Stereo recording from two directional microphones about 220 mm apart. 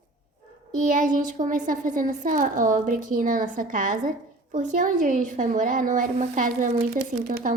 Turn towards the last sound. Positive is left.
turn(degrees=-40)  # may be behind; listen again after turning